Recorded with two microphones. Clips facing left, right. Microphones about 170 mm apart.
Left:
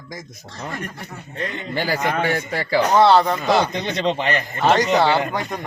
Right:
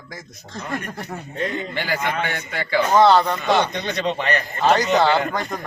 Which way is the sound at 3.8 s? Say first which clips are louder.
Left 2 dB; 25° left (ahead or behind).